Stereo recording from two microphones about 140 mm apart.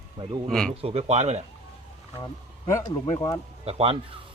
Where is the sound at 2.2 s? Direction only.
30° left (ahead or behind).